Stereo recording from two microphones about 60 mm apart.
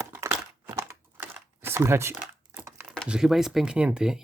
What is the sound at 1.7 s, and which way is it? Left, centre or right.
Speech, right.